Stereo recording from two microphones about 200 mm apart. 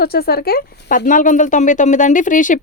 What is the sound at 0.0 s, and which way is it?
A woman's voice, 50° left (ahead or behind).